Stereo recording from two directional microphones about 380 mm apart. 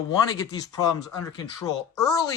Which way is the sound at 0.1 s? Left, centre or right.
Centre.